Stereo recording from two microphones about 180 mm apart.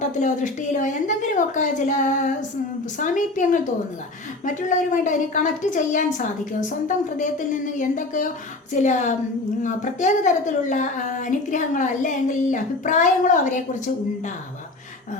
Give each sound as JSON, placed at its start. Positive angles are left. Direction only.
{"t": 0.0, "sound": "a woman's voice", "side_deg": 45}